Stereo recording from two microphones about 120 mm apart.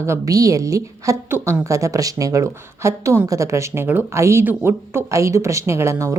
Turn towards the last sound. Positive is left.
turn(degrees=-25)  # may be behind; listen again after turning